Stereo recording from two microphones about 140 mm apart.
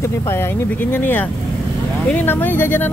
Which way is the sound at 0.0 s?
20° left (ahead or behind).